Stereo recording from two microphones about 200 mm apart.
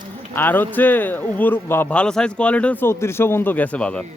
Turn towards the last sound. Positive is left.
turn(degrees=5)  # may be behind; listen again after turning